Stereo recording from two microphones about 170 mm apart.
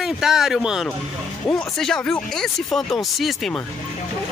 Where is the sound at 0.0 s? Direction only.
Centre (ahead or behind).